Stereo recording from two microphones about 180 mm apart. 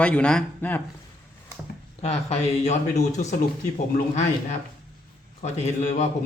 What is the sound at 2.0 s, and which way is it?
Speech, 35° left (ahead or behind).